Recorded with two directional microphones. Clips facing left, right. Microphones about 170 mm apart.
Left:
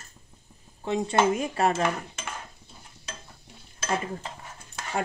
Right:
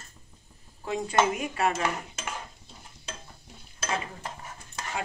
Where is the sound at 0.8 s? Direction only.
25° left (ahead or behind).